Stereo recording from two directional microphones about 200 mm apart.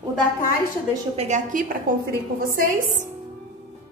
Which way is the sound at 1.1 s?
35° right (ahead or behind).